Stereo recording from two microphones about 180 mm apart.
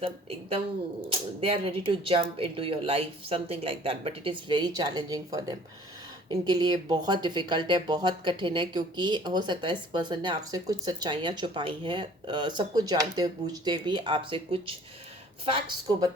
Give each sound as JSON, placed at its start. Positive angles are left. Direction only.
{"t": 1.4, "sound": "speech", "side_deg": -30}